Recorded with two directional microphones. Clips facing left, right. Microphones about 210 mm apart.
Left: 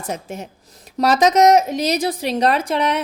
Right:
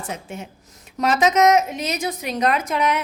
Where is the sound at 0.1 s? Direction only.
40° left (ahead or behind).